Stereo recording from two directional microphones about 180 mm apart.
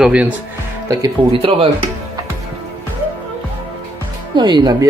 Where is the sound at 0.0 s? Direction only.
5° right (ahead or behind).